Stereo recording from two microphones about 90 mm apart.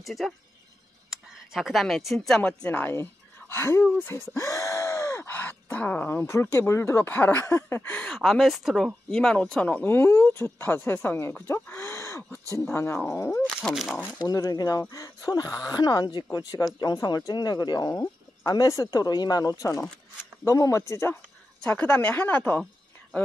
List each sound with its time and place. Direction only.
0.0 s speech: centre (ahead or behind); by 3.8 s 30° left (ahead or behind)
3.8 s a woman's voice: 15° left (ahead or behind)
4.4 s groan: 35° left (ahead or behind)
7.5 s speech: 25° left (ahead or behind)
8.1 s speech: centre (ahead or behind); by 13.4 s 30° left (ahead or behind)
13.6 s speech: centre (ahead or behind)
14.1 s speech: 45° left (ahead or behind); by 21.2 s 30° left (ahead or behind)
21.6 s a woman's voice: 15° left (ahead or behind)